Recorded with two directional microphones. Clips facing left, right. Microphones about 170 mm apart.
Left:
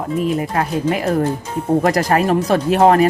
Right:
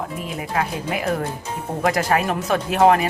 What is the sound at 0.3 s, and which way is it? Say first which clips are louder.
Speech: left 5 dB; 40° left (ahead or behind).